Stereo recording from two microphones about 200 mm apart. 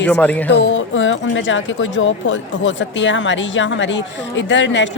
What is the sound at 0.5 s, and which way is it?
A woman's voice, 65° left (ahead or behind).